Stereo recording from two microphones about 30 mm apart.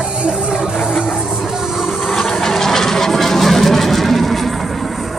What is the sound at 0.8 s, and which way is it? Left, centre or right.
Music, centre.